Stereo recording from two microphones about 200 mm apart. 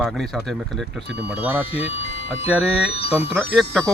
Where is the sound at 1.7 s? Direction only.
30° left (ahead or behind).